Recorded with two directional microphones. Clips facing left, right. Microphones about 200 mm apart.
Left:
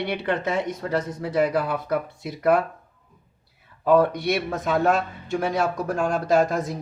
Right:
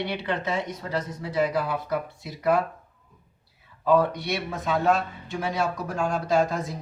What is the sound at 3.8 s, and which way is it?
Speech, 50° left (ahead or behind).